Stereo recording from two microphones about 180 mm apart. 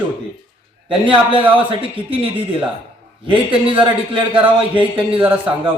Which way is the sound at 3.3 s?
25° right (ahead or behind).